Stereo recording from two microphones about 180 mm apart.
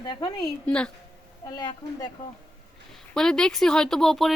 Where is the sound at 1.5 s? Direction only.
20° left (ahead or behind).